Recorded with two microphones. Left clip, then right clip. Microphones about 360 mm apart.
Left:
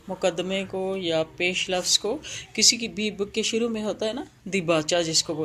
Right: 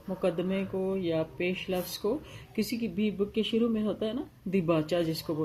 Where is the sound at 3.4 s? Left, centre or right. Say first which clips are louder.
Left 4 dB; left.